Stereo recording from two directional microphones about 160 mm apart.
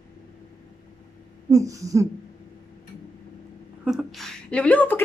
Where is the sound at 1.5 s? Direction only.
20° right (ahead or behind).